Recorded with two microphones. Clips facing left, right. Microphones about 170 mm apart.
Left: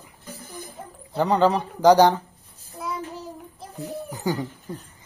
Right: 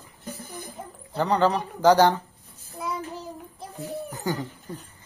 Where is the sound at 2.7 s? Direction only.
Centre (ahead or behind).